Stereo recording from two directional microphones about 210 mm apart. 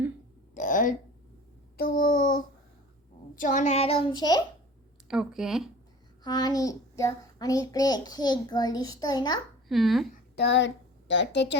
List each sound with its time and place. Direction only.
0.5 s a sound: 40° left (ahead or behind)
3.3 s a child's voice: 40° left (ahead or behind); by 4.4 s 20° left (ahead or behind)
5.0 s speech: 5° right (ahead or behind)
6.2 s a child's voice: 20° left (ahead or behind)
9.6 s speech: centre (ahead or behind)
10.3 s a woman's voice: 55° left (ahead or behind)